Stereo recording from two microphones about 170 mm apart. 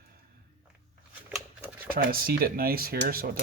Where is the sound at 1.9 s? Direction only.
60° right (ahead or behind).